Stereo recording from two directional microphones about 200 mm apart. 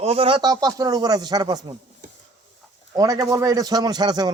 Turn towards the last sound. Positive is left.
turn(degrees=-20)  # may be behind; listen again after turning